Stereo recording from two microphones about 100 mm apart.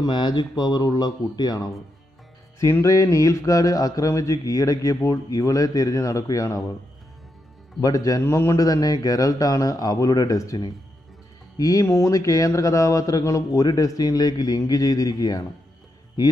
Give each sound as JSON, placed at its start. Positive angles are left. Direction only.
{"t": 0.0, "sound": "speech", "side_deg": 50}
{"t": 2.6, "sound": "speech", "side_deg": 30}
{"t": 7.8, "sound": "speech", "side_deg": 35}